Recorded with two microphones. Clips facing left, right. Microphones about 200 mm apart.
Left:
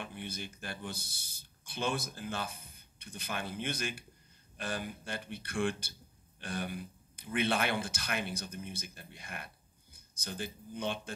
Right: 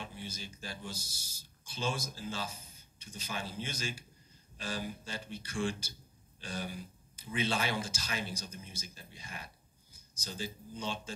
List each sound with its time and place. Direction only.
0.0 s a man's voice: 60° left (ahead or behind)